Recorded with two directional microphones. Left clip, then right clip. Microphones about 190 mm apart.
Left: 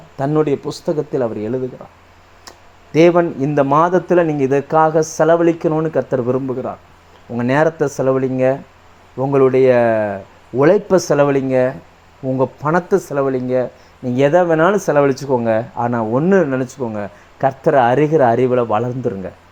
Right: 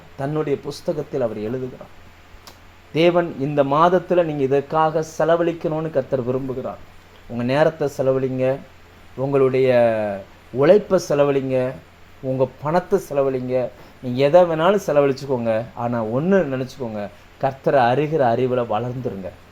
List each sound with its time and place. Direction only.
0.2 s speech: 40° left (ahead or behind)
2.9 s speech: 40° left (ahead or behind)